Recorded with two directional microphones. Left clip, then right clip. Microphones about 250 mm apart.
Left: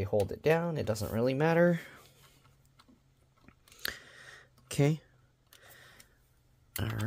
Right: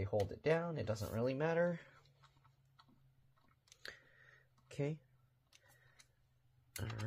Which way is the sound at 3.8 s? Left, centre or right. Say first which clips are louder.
Left 14 dB; left.